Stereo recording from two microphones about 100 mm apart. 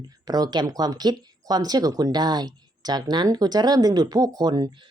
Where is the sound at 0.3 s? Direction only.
40° right (ahead or behind).